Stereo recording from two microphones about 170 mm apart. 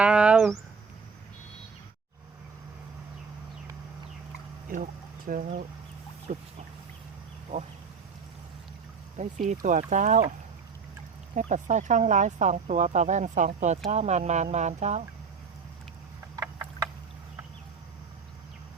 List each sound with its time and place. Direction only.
0.0 s a sound: 5° right (ahead or behind)
4.7 s speech: 55° right (ahead or behind)
7.5 s speech: 45° right (ahead or behind)
9.5 s speech: 45° right (ahead or behind)
11.3 s speech: 45° right (ahead or behind)
16.3 s a sound: 20° right (ahead or behind)